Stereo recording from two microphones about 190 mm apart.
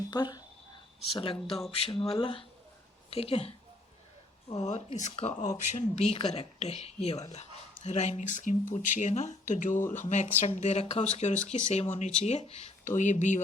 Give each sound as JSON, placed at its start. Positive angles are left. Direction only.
{"t": 0.1, "sound": "speech", "side_deg": 20}
{"t": 0.9, "sound": "speech", "side_deg": 30}